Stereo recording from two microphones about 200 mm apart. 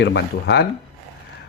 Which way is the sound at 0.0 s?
60° left (ahead or behind).